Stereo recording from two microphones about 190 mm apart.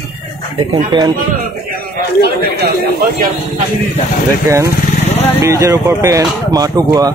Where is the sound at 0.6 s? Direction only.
25° right (ahead or behind).